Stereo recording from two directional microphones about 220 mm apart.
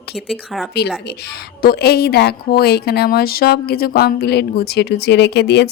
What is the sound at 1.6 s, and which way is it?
A woman's voice, 45° left (ahead or behind).